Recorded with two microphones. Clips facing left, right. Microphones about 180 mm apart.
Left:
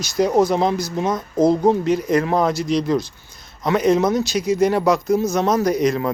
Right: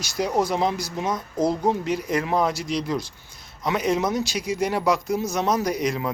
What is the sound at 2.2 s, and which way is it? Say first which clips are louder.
Speech: left 4 dB; 45° left (ahead or behind).